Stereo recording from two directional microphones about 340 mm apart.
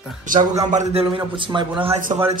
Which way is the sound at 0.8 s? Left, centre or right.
Centre.